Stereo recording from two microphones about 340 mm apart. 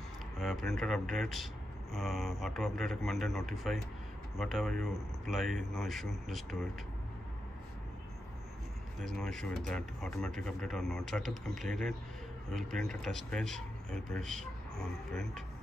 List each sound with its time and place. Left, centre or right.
0.4 s speech: centre
9.0 s speech: centre